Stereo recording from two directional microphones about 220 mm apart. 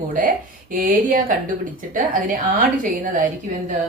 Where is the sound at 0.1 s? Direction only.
40° right (ahead or behind).